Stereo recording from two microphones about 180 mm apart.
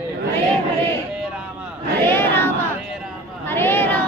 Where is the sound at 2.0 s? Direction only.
10° left (ahead or behind).